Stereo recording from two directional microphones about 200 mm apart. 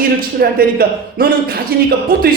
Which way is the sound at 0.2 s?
50° right (ahead or behind).